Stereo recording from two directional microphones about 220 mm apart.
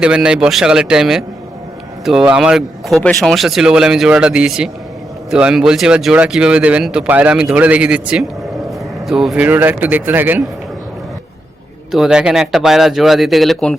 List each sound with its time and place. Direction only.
0.0 s speech: 5° right (ahead or behind)
11.9 s speech: centre (ahead or behind)